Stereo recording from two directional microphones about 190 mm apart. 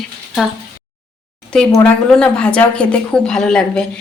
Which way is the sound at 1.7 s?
5° left (ahead or behind).